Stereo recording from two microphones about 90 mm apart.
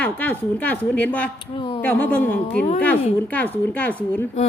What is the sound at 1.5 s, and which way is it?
Speech, 75° left (ahead or behind).